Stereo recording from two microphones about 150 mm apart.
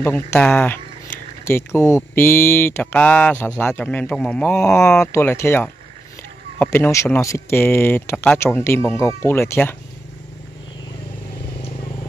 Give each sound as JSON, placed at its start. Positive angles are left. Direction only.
{"t": 0.0, "sound": "speech", "side_deg": 10}